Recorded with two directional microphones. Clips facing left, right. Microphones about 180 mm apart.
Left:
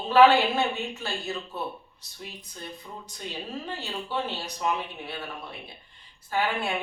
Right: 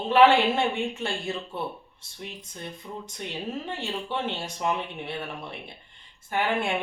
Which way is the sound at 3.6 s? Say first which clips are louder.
Right 2 dB; 20° right (ahead or behind).